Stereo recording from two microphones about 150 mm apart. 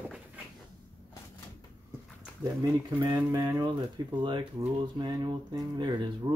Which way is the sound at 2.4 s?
20° right (ahead or behind).